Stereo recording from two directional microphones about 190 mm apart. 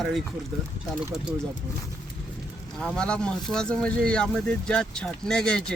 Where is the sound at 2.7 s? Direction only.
5° left (ahead or behind).